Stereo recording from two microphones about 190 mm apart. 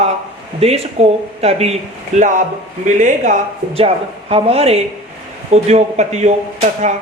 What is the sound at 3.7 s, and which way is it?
Speech, 30° right (ahead or behind).